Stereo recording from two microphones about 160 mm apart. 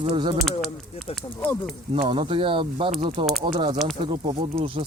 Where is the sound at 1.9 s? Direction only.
35° right (ahead or behind).